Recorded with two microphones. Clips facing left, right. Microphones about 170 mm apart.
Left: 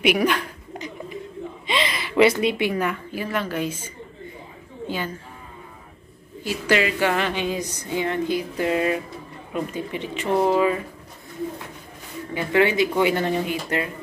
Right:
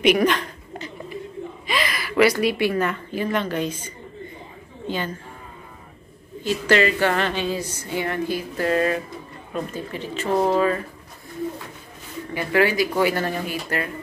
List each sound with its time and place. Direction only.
0.0 s a sound: 10° left (ahead or behind)
1.7 s a woman's voice: 25° left (ahead or behind); by 5.1 s 10° left (ahead or behind)
6.4 s a woman's voice: 10° left (ahead or behind)
12.4 s speech: 25° left (ahead or behind)